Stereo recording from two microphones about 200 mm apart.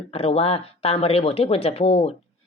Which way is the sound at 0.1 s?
30° left (ahead or behind).